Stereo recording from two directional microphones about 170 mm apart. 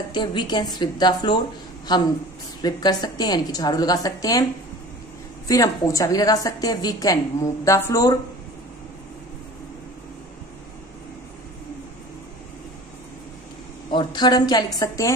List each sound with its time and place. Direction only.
0.1 s a woman's voice: 25° left (ahead or behind)
5.5 s a woman's voice: 20° left (ahead or behind)
13.8 s a woman's voice: 25° left (ahead or behind)